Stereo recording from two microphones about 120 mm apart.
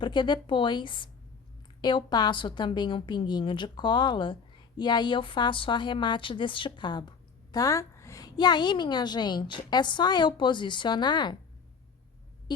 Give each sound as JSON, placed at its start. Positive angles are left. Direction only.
{"t": 0.0, "sound": "a woman's voice", "side_deg": 40}
{"t": 7.5, "sound": "a woman's voice", "side_deg": 30}
{"t": 12.5, "sound": "hum", "side_deg": 40}